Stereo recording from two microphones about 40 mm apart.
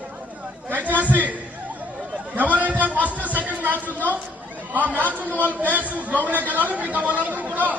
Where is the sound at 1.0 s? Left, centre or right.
Right.